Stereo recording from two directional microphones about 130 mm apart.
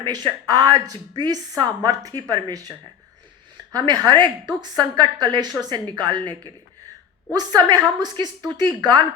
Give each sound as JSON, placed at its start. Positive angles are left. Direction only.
{"t": 0.0, "sound": "a woman's voice", "side_deg": -30}
{"t": 3.8, "sound": "a woman's voice", "side_deg": -35}